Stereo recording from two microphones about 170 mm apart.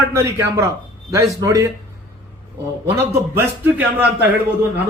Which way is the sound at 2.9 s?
15° right (ahead or behind).